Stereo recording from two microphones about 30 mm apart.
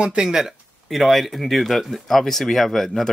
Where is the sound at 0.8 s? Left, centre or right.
Centre.